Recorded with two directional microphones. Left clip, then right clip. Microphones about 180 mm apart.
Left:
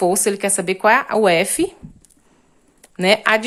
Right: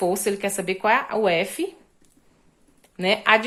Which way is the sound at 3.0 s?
40° left (ahead or behind).